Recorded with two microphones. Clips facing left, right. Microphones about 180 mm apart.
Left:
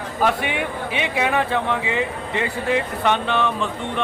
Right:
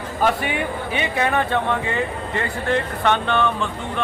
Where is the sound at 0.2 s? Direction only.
Centre (ahead or behind).